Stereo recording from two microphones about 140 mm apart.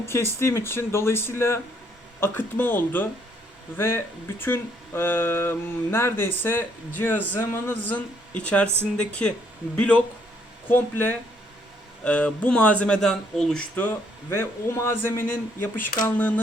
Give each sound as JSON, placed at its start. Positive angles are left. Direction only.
{"t": 0.0, "sound": "speech", "side_deg": 20}